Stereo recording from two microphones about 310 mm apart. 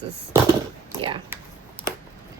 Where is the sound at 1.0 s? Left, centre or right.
Centre.